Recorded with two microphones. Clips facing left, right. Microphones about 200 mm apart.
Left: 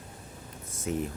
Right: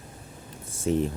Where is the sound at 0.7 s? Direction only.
30° right (ahead or behind).